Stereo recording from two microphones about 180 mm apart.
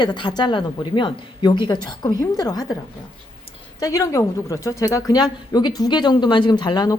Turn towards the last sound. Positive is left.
turn(degrees=25)  # may be behind; listen again after turning